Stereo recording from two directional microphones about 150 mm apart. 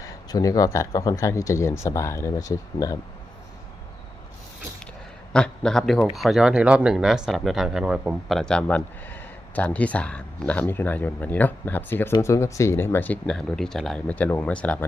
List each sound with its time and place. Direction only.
0.0 s speech: 25° left (ahead or behind)
5.3 s speech: 5° left (ahead or behind)